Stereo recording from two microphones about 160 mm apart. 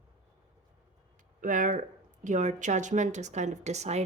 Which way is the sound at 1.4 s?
55° right (ahead or behind).